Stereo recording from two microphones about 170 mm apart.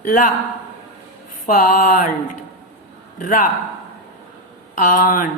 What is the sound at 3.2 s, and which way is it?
Speech, 50° left (ahead or behind).